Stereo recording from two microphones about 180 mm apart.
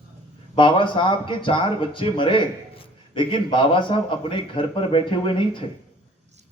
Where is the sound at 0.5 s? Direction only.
30° left (ahead or behind).